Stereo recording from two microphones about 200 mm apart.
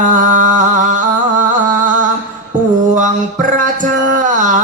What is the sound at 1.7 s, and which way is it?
Music, 40° right (ahead or behind).